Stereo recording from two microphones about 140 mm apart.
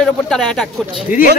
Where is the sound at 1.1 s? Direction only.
70° left (ahead or behind).